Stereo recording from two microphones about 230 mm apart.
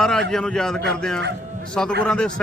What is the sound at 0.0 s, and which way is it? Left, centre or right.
A man's voice, centre.